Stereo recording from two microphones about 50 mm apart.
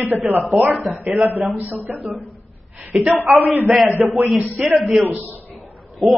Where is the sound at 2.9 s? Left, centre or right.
Centre.